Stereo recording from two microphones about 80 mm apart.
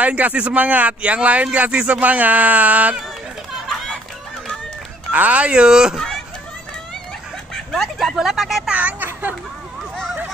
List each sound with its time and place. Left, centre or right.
0.0 s speech: centre
3.6 s a sound: centre
5.1 s speech: centre
5.9 s children playing: centre
7.5 s speech: centre
8.7 s speech: centre